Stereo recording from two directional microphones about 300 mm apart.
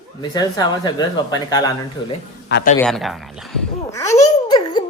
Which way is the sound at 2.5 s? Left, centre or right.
Left.